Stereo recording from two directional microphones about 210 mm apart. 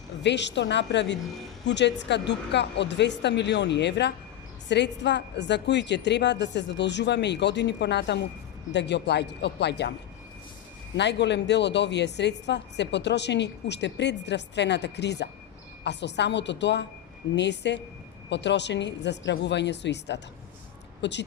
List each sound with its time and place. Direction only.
0.2 s a woman's voice: 55° left (ahead or behind)
10.9 s a woman's voice: 55° left (ahead or behind)